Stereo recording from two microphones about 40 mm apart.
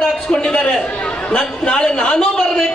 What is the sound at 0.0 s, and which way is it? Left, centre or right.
A man's voice, left.